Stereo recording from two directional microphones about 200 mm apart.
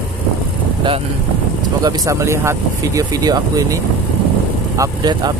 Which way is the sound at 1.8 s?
15° right (ahead or behind).